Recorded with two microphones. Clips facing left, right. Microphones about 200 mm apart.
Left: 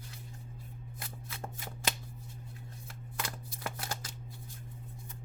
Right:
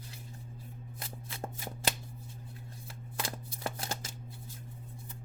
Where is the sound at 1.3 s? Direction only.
30° right (ahead or behind).